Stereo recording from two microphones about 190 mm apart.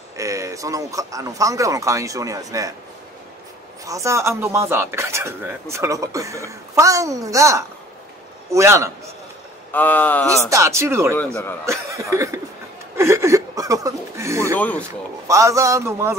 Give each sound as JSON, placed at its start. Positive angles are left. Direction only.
{"t": 0.2, "sound": "speech", "side_deg": -15}
{"t": 3.8, "sound": "speech", "side_deg": -15}
{"t": 9.7, "sound": "speech", "side_deg": 10}
{"t": 10.5, "sound": "speech", "side_deg": -15}
{"t": 12.9, "sound": "a sound", "side_deg": -15}
{"t": 14.6, "sound": "speech", "side_deg": 10}
{"t": 15.2, "sound": "speech", "side_deg": -15}